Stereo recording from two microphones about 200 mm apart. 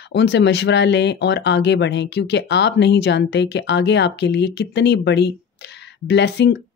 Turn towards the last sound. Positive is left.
turn(degrees=60)  # may be behind; listen again after turning